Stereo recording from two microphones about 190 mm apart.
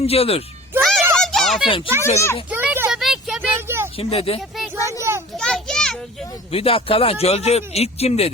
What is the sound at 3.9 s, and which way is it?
Speech, 30° left (ahead or behind).